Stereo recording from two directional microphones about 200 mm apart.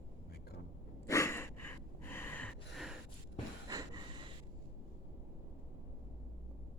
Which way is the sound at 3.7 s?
20° right (ahead or behind).